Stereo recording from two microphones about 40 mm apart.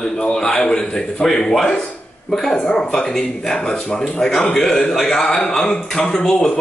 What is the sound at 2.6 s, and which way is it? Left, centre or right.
Speech, centre.